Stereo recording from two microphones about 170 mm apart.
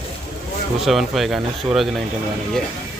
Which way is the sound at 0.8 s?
Centre (ahead or behind).